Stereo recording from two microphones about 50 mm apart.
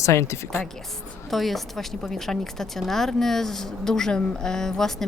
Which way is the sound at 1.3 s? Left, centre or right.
Centre.